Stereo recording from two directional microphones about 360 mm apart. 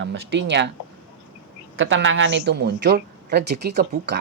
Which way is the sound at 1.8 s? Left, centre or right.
Right.